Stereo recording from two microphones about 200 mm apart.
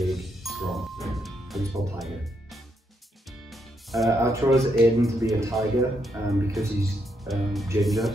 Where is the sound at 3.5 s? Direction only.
Centre (ahead or behind).